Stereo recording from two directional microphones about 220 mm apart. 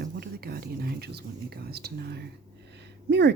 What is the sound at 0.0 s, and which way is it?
Speech, 45° right (ahead or behind).